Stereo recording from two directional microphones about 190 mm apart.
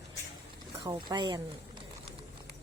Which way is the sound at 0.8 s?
20° right (ahead or behind).